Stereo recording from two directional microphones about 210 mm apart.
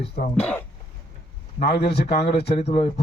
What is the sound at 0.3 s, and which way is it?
Speech, 5° left (ahead or behind).